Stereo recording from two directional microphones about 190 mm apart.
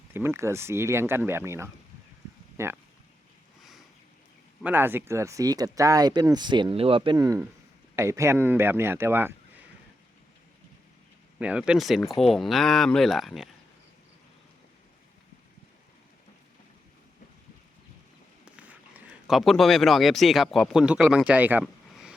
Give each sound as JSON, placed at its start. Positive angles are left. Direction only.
{"t": 0.1, "sound": "speech", "side_deg": -10}
{"t": 4.6, "sound": "speech", "side_deg": -10}
{"t": 11.3, "sound": "speech", "side_deg": -5}
{"t": 18.4, "sound": "speech", "side_deg": -5}